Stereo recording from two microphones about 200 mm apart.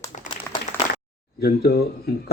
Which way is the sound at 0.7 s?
35° left (ahead or behind).